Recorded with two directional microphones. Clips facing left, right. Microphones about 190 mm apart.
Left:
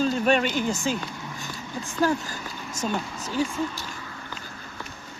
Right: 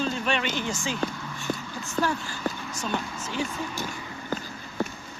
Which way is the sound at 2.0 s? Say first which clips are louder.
Left 3 dB; 40° left (ahead or behind).